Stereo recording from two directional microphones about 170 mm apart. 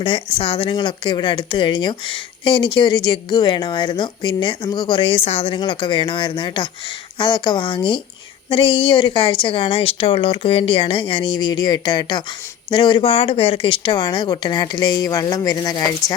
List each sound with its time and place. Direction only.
0.0 s a woman's voice: 30° left (ahead or behind)